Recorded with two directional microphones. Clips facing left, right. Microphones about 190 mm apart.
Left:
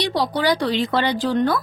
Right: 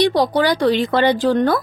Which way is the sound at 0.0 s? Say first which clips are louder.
Right 5 dB; 50° right (ahead or behind).